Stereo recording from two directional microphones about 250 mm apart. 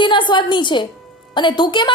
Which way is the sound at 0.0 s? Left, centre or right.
Centre.